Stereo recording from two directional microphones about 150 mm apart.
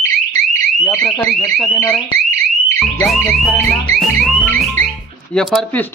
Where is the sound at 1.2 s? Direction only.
15° left (ahead or behind).